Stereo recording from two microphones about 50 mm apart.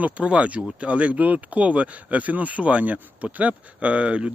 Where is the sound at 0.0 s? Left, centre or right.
Right.